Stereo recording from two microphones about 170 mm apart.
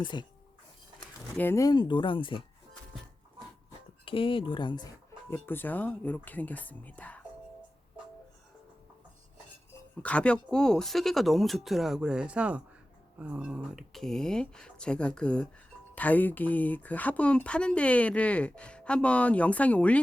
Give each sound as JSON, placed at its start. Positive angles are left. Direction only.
{"t": 0.0, "sound": "speech", "side_deg": 25}
{"t": 0.9, "sound": "speech", "side_deg": 10}
{"t": 4.0, "sound": "speech", "side_deg": 30}
{"t": 5.3, "sound": "speech", "side_deg": 10}
{"t": 10.0, "sound": "speech", "side_deg": 5}